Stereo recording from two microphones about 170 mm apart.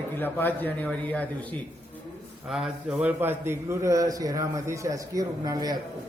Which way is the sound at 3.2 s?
15° right (ahead or behind).